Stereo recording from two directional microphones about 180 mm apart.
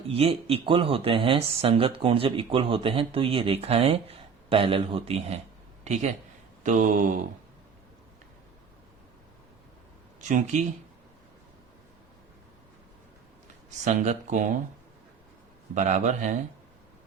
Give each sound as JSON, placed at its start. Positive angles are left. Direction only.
{"t": 0.1, "sound": "a man's voice", "side_deg": -30}
{"t": 10.2, "sound": "speech", "side_deg": -45}
{"t": 13.7, "sound": "speech", "side_deg": -40}
{"t": 15.7, "sound": "speech", "side_deg": -40}